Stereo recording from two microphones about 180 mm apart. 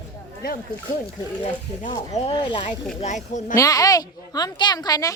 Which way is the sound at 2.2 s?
35° left (ahead or behind).